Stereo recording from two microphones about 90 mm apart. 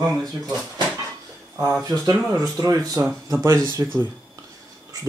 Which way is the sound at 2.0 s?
40° right (ahead or behind).